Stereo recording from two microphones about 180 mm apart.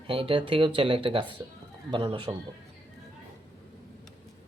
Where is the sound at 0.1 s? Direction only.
30° right (ahead or behind).